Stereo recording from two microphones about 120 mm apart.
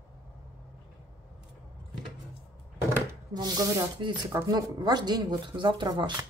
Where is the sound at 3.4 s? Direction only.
35° right (ahead or behind).